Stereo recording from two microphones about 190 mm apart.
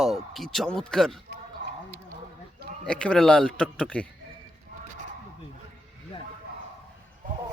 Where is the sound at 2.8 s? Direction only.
5° left (ahead or behind).